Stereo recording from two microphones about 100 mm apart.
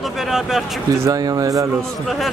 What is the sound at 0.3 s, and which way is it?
Speech, 5° right (ahead or behind).